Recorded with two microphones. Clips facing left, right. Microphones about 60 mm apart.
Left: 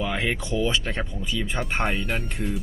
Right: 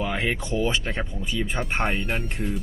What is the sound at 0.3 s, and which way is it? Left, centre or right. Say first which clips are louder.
Speech: even; right.